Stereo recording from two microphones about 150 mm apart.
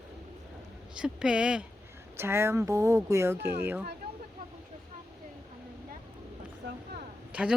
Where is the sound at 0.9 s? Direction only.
5° right (ahead or behind).